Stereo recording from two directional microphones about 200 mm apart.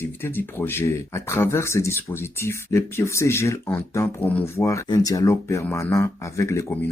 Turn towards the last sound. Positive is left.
turn(degrees=15)  # may be behind; listen again after turning